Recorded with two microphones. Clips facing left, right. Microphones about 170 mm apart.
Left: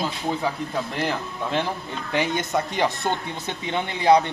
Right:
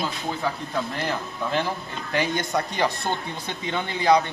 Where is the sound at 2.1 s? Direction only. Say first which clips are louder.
Left 1 dB; 25° left (ahead or behind).